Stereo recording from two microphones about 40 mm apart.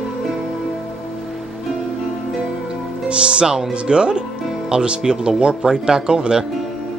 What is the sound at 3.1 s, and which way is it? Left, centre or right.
Speech, right.